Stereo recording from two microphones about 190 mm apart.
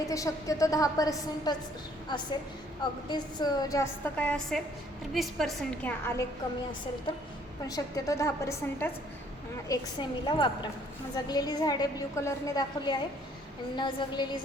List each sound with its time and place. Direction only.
0.1 s a woman's voice: 15° left (ahead or behind); by 5.9 s centre (ahead or behind)
7.7 s a woman's voice: 20° left (ahead or behind)